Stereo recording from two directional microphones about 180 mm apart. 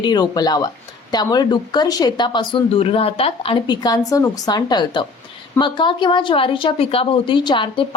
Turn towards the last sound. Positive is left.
turn(degrees=25)  # may be behind; listen again after turning